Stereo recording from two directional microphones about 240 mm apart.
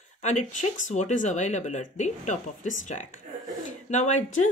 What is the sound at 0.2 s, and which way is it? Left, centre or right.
A woman's voice, left.